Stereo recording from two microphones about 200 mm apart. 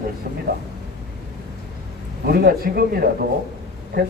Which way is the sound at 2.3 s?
50° right (ahead or behind).